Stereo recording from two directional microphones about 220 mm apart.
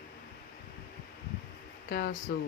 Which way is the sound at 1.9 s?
45° left (ahead or behind).